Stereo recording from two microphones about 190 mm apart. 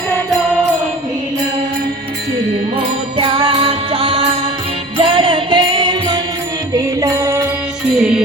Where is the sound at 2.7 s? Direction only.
25° right (ahead or behind).